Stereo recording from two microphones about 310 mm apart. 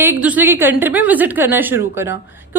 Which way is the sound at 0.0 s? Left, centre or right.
Centre.